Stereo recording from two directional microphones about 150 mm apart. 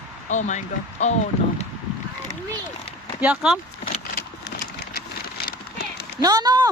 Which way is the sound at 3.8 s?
85° left.